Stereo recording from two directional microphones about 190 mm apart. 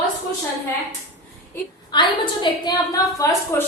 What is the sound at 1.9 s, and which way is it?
A woman's voice, 25° left (ahead or behind).